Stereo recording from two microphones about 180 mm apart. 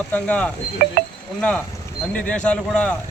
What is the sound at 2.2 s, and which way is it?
Speech, 5° left (ahead or behind).